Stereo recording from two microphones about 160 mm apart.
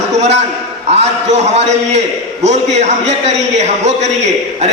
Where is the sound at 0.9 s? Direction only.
45° right (ahead or behind).